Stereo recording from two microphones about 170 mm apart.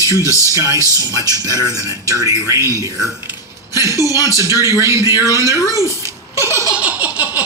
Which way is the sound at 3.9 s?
20° left (ahead or behind).